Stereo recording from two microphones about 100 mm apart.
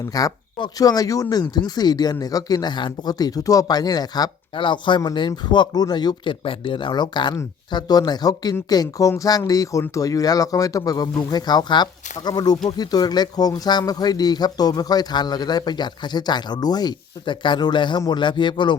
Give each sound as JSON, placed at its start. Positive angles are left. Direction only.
{"t": 0.1, "sound": "speech", "side_deg": 40}
{"t": 4.5, "sound": "speech", "side_deg": 55}
{"t": 6.4, "sound": "speech", "side_deg": 60}